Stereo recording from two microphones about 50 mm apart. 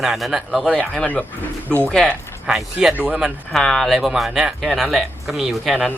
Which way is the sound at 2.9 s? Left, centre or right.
Right.